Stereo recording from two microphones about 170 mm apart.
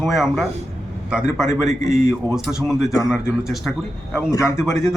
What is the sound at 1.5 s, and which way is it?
Speech, 45° right (ahead or behind).